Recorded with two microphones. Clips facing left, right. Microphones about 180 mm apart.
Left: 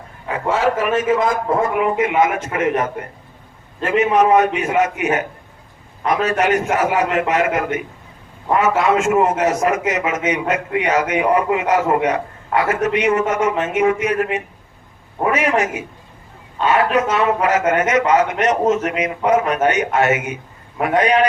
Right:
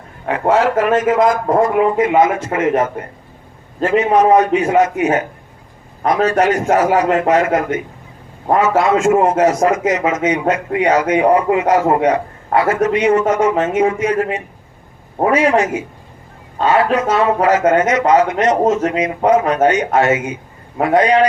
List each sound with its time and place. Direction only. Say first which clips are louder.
0.4 s a man's voice: right 4 dB; 45° right (ahead or behind)